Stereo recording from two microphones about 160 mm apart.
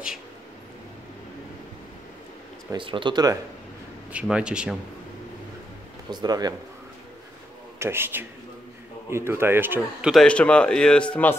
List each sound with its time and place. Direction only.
2.7 s speech: 30° right (ahead or behind)
4.1 s speech: 5° right (ahead or behind)
6.0 s speech: 25° right (ahead or behind)
7.8 s a man's voice: 15° right (ahead or behind)
10.2 s speech: 5° left (ahead or behind)